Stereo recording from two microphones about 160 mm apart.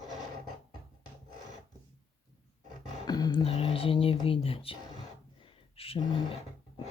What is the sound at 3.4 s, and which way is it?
Speech, 35° left (ahead or behind).